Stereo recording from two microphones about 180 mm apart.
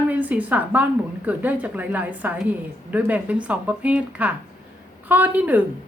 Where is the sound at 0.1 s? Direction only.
10° right (ahead or behind).